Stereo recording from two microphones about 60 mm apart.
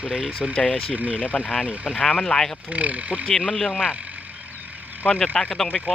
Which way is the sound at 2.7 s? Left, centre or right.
Right.